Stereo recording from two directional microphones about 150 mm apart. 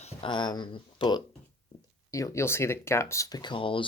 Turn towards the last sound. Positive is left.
turn(degrees=35)  # may be behind; listen again after turning